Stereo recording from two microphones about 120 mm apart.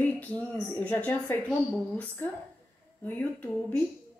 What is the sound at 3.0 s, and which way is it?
Speech, 15° left (ahead or behind).